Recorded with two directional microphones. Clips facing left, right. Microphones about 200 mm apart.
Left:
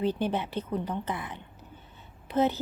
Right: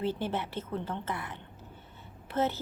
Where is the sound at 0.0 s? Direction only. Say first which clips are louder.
Left 4 dB; 15° left (ahead or behind).